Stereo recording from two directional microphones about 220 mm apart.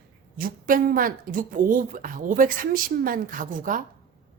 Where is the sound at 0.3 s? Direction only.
40° right (ahead or behind).